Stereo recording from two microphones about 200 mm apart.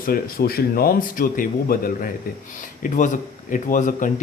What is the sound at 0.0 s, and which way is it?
A man's voice, 50° left (ahead or behind).